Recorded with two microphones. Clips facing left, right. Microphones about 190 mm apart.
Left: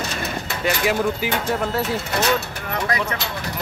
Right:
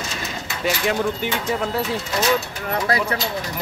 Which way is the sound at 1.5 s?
Centre (ahead or behind).